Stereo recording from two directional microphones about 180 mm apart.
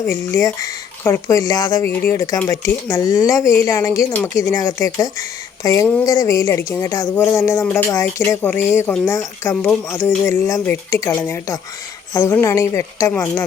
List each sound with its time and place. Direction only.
0.1 s speech: 15° left (ahead or behind)